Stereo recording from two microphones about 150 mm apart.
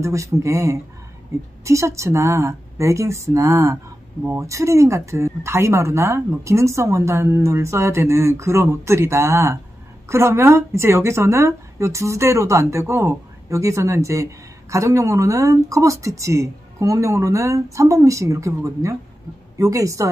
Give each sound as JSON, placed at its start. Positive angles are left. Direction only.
{"t": 0.0, "sound": "a woman's voice", "side_deg": -20}